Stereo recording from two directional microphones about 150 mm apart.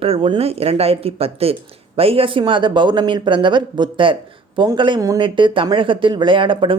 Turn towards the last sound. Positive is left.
turn(degrees=-35)  # may be behind; listen again after turning